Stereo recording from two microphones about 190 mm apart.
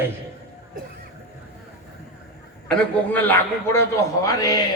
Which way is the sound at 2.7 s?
5° left (ahead or behind).